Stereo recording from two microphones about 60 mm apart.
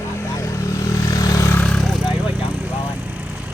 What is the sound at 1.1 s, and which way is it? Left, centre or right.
Vehicle, left.